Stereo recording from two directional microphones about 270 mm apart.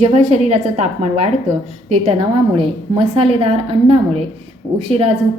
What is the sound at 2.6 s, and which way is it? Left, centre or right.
A woman's voice, right.